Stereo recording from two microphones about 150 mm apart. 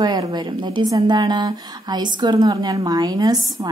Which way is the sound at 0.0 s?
30° right (ahead or behind).